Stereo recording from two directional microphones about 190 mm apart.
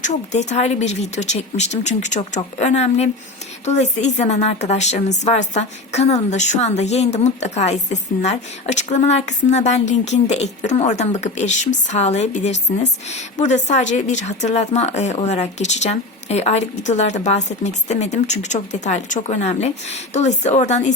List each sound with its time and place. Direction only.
0.0 s a woman's voice: 40° left (ahead or behind)